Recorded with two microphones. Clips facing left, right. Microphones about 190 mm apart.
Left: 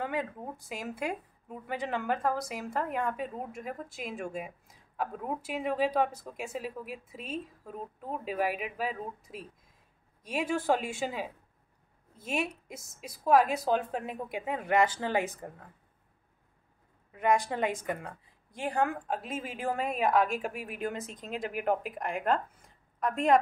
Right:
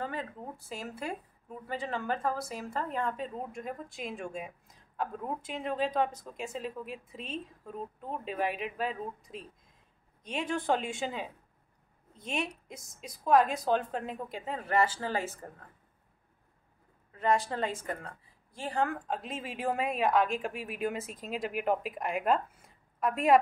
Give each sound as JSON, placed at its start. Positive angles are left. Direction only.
{"t": 0.0, "sound": "a woman's voice", "side_deg": 15}
{"t": 17.2, "sound": "a woman's voice", "side_deg": 15}